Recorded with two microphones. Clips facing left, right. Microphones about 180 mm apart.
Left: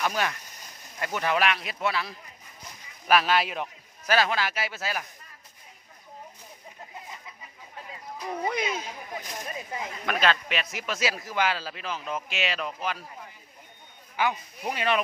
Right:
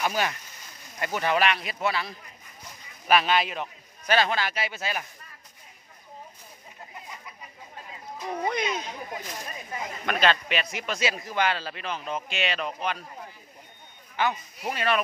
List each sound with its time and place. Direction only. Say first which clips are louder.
0.0 s speech: right 1 dB; 5° right (ahead or behind)
8.3 s speech: right 1 dB; 5° left (ahead or behind)
10.1 s speech: right 1 dB; centre (ahead or behind)
14.2 s speech: even; 10° left (ahead or behind)